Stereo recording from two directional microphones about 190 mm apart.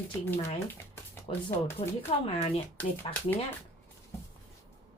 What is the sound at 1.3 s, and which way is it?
Speech, 25° left (ahead or behind).